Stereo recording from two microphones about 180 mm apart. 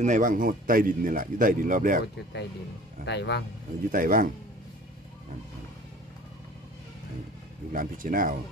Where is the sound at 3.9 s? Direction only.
50° right (ahead or behind).